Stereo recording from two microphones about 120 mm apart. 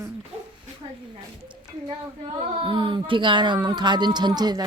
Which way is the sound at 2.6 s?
45° right (ahead or behind).